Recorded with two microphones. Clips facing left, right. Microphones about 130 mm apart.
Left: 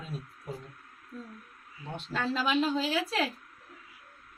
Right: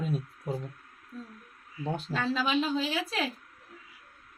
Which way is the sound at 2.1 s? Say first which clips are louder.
Even; centre (ahead or behind).